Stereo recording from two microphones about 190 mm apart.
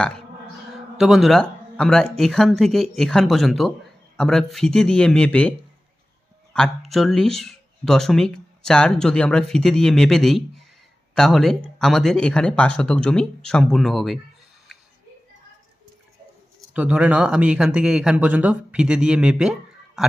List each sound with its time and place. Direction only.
0.9 s speech: centre (ahead or behind)
16.7 s speech: 5° right (ahead or behind)